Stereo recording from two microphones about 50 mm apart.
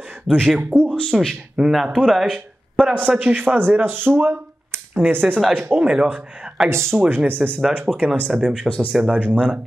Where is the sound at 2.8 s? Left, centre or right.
Right.